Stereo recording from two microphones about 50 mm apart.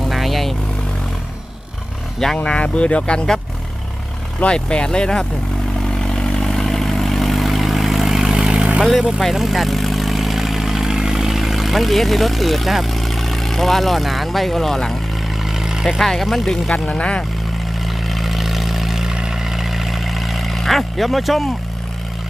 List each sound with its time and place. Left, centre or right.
0.1 s vehicle: centre
2.2 s speech: centre
2.6 s speech: left
6.0 s vehicle: centre; by 8.8 s right
8.8 s speech: centre
9.3 s vehicle: centre
15.4 s vehicle: centre
16.0 s speech: centre
16.7 s speech: left
17.8 s vehicle: centre